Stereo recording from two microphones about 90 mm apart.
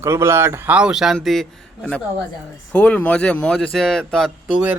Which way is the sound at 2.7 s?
15° left (ahead or behind).